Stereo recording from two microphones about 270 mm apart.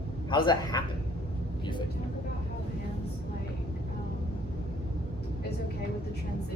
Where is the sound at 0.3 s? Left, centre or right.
Centre.